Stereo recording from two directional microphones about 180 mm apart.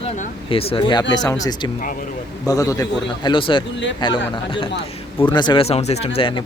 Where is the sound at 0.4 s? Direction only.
30° left (ahead or behind).